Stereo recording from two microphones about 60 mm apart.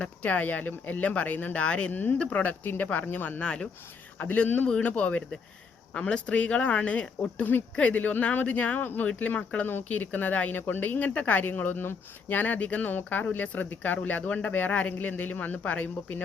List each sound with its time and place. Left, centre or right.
0.0 s speech: left
1.6 s speech: centre
1.9 s speech: left
2.1 s speech: left
3.4 s speech: centre
4.2 s speech: left